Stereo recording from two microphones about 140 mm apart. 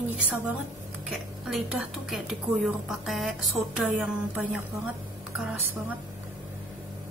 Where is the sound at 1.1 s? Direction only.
5° right (ahead or behind).